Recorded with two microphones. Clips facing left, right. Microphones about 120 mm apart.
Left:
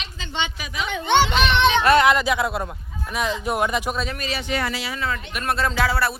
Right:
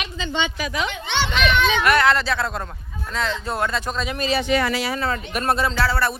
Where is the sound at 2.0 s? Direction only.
15° left (ahead or behind).